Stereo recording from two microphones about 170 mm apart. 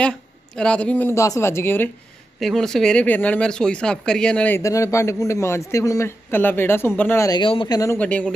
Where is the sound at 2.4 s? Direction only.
Centre (ahead or behind); by 7.9 s 20° left (ahead or behind).